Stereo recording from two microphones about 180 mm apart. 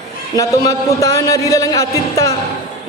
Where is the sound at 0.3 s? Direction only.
20° left (ahead or behind).